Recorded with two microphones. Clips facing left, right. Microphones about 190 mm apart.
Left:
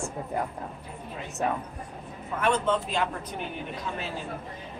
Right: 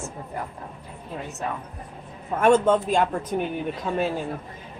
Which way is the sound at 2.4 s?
50° right (ahead or behind).